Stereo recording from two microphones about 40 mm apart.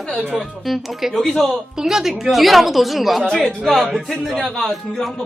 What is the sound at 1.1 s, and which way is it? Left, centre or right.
Speech, centre.